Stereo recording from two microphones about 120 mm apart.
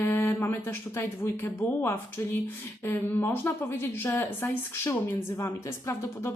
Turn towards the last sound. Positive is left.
turn(degrees=20)  # may be behind; listen again after turning